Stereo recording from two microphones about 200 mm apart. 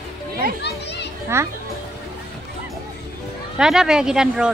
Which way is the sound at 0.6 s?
55° left (ahead or behind).